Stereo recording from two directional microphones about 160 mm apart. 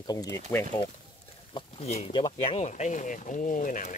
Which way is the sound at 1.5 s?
40° left (ahead or behind).